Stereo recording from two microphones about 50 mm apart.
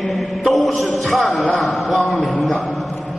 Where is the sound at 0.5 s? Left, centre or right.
Centre.